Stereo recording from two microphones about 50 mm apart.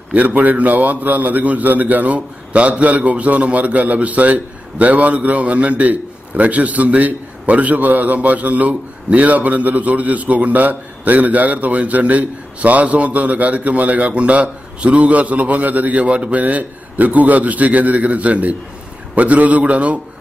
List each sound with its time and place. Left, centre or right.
0.1 s a man's voice: right